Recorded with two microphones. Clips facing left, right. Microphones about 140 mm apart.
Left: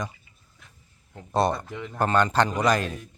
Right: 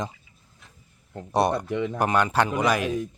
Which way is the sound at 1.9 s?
10° right (ahead or behind).